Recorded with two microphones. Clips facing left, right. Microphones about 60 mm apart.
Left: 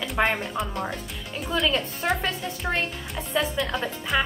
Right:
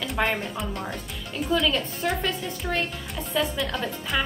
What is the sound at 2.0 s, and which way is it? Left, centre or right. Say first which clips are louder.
Speech: left 2 dB; left.